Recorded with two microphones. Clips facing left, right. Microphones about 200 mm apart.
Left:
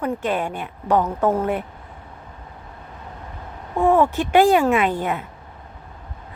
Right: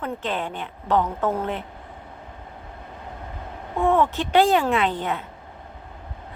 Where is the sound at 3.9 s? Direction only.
15° left (ahead or behind).